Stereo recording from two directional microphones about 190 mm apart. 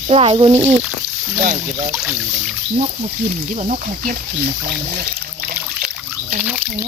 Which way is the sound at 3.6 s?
40° right (ahead or behind).